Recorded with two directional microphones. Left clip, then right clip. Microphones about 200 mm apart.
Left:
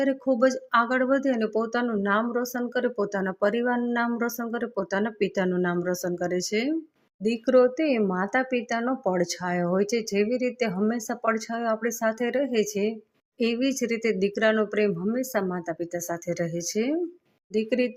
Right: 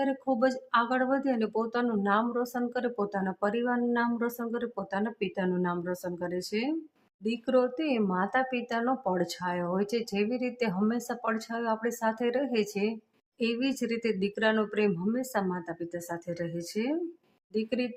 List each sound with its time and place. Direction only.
0.0 s speech: 15° left (ahead or behind)